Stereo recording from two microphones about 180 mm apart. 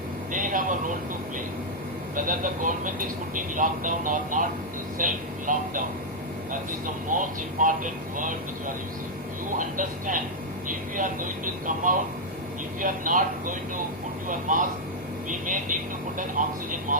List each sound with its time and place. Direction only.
0.3 s a sound: 50° right (ahead or behind)
2.1 s speech: 50° right (ahead or behind)
7.1 s speech: 45° right (ahead or behind)